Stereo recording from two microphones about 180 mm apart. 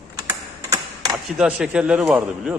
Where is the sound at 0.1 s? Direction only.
15° right (ahead or behind).